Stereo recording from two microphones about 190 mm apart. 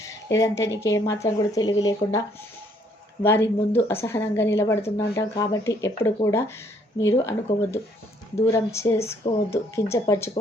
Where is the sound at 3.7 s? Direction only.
10° left (ahead or behind).